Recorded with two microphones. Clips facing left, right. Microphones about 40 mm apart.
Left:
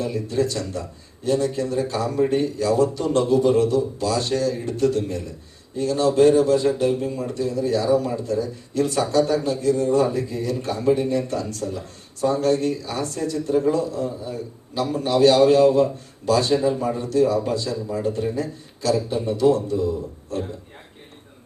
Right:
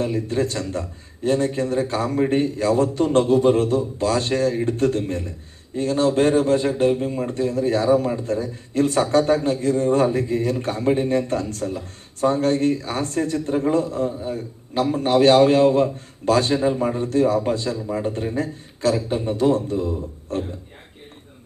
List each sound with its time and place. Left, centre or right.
0.0 s a man's voice: right